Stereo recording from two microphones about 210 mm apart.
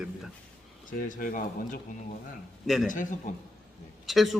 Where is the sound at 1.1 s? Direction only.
40° left (ahead or behind).